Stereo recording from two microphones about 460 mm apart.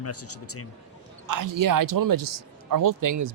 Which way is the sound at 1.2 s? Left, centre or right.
Right.